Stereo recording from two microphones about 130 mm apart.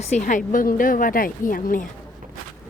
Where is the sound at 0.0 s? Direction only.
70° left (ahead or behind); by 1.9 s 90° left.